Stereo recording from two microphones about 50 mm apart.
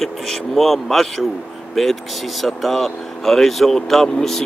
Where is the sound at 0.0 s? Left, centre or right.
Centre.